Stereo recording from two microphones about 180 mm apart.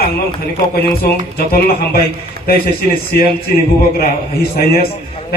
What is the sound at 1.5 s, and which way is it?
A man's voice, 55° left (ahead or behind).